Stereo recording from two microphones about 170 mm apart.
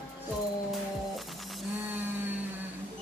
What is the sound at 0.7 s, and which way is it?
Music, centre (ahead or behind).